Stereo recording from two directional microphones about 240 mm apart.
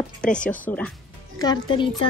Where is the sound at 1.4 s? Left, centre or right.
Centre.